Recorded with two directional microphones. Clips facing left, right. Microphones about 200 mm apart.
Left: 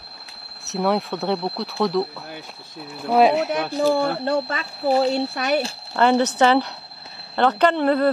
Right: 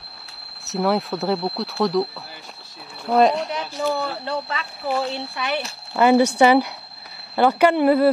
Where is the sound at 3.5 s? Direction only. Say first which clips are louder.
Left 5 dB; 55° left (ahead or behind).